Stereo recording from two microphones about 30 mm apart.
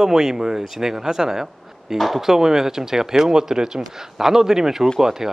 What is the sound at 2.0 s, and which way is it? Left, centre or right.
Speech, centre.